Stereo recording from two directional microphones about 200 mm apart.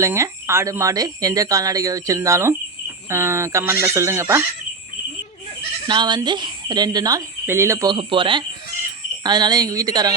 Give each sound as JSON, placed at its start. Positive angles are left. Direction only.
{"t": 0.0, "sound": "speech", "side_deg": -15}
{"t": 5.9, "sound": "speech", "side_deg": -20}